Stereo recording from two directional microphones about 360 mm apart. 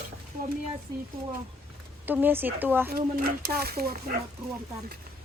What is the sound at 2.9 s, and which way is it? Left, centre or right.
Speech, right.